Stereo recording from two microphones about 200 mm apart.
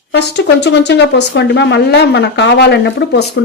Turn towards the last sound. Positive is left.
turn(degrees=60)  # may be behind; listen again after turning